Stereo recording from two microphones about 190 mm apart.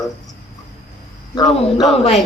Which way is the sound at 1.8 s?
Centre (ahead or behind).